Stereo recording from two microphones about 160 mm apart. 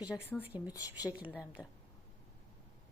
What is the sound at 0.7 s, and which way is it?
Speech, 20° left (ahead or behind).